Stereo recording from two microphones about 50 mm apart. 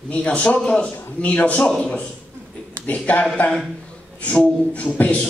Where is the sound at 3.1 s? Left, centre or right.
Left.